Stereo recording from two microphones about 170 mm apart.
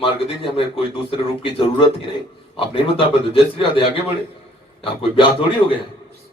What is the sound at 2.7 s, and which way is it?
A man's voice, 30° left (ahead or behind).